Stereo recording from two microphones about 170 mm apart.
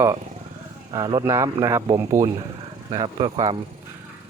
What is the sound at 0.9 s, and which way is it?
Speech, 25° right (ahead or behind).